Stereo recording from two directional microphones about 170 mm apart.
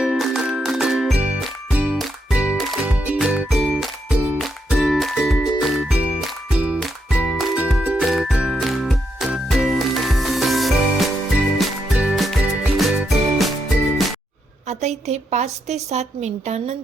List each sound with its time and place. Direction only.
0.0 s music: 5° right (ahead or behind)
14.7 s a woman's voice: 40° right (ahead or behind)